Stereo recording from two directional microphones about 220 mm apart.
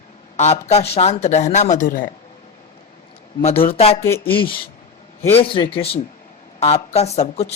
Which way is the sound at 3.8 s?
25° left (ahead or behind).